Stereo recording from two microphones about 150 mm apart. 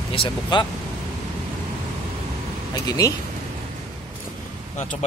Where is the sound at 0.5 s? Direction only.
30° left (ahead or behind).